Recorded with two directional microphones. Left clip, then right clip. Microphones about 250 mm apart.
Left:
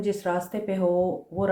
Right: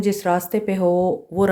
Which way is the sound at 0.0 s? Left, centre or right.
Right.